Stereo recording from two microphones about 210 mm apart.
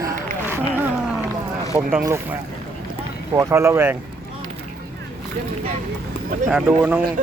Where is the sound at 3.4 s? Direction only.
15° right (ahead or behind).